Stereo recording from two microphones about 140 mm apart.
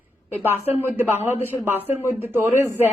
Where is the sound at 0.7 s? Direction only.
15° right (ahead or behind).